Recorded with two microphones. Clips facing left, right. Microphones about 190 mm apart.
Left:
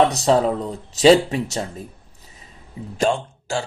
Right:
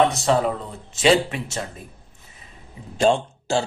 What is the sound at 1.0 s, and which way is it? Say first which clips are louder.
Speech: left 5 dB; 40° left (ahead or behind).